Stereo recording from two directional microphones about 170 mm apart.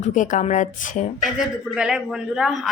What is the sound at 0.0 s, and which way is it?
A woman's voice, 45° left (ahead or behind).